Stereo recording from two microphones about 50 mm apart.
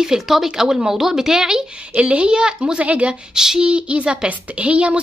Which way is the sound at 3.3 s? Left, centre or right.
Centre.